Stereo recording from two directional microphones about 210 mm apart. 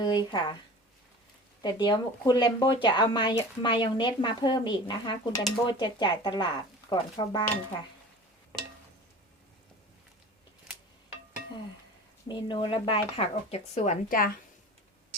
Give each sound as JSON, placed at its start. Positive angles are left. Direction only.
{"t": 0.0, "sound": "speech", "side_deg": 20}
{"t": 1.6, "sound": "speech", "side_deg": 20}
{"t": 12.3, "sound": "speech", "side_deg": 25}